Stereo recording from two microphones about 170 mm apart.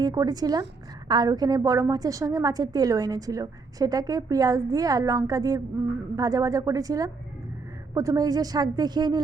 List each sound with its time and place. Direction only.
0.0 s a woman's voice: 20° right (ahead or behind)